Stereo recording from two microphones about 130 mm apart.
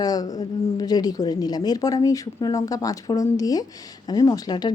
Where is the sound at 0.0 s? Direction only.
30° left (ahead or behind).